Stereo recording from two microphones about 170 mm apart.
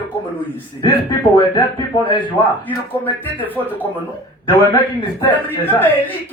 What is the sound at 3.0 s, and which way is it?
Speech, 10° left (ahead or behind).